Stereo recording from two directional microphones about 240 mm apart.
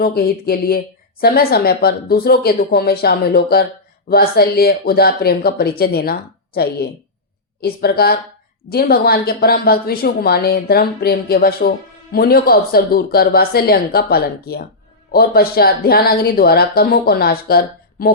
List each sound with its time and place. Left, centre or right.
0.0 s a woman's voice: left